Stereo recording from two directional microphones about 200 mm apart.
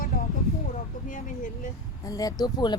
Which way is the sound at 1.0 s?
40° left (ahead or behind).